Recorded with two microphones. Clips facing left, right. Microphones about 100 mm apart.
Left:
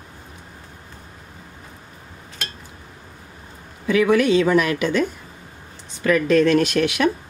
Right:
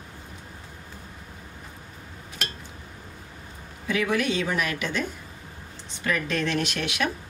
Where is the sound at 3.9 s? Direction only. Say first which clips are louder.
Left 9 dB; 85° left.